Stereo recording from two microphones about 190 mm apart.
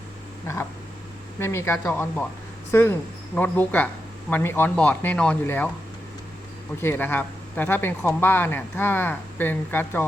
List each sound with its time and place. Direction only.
1.4 s speech: 15° left (ahead or behind)
6.8 s speech: 10° left (ahead or behind)